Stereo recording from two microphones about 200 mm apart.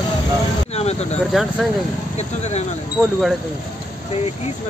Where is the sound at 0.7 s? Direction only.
30° left (ahead or behind).